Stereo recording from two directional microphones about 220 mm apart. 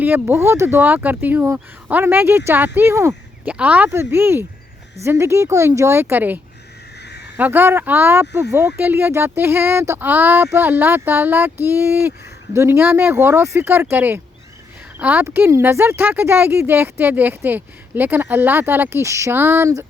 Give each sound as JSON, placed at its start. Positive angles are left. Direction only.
{"t": 0.0, "sound": "speech", "side_deg": -10}
{"t": 7.0, "sound": "crow", "side_deg": 50}
{"t": 7.3, "sound": "speech", "side_deg": -10}